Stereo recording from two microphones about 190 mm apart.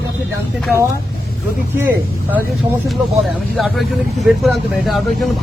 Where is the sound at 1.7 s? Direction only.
10° right (ahead or behind).